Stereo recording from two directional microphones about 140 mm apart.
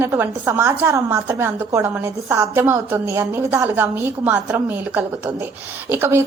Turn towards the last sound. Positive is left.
turn(degrees=-15)  # may be behind; listen again after turning